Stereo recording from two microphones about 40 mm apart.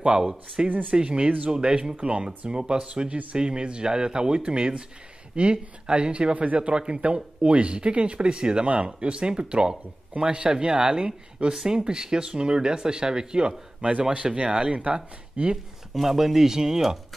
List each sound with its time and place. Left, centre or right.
0.0 s speech: centre; by 6.7 s right
6.7 s speech: right
13.7 s speech: right
15.5 s speech: centre